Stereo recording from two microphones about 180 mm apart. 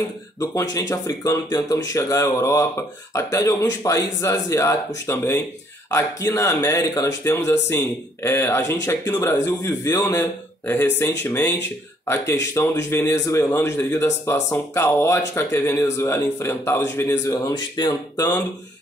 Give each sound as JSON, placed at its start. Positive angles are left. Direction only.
{"t": 0.4, "sound": "a man's voice", "side_deg": 20}
{"t": 11.2, "sound": "a man's voice", "side_deg": 15}
{"t": 12.5, "sound": "a man's voice", "side_deg": 15}